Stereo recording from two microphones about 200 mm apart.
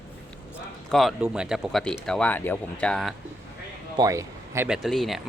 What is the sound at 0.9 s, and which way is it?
Speech, centre (ahead or behind).